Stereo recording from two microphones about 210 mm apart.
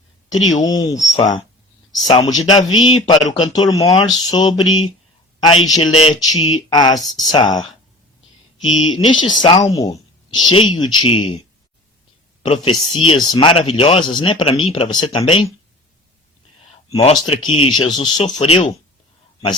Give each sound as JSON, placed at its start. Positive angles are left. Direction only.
{"t": 0.5, "sound": "speech", "side_deg": 15}
{"t": 8.6, "sound": "speech", "side_deg": 70}
{"t": 9.2, "sound": "speech", "side_deg": 20}
{"t": 12.5, "sound": "speech", "side_deg": 25}
{"t": 16.9, "sound": "speech", "side_deg": 30}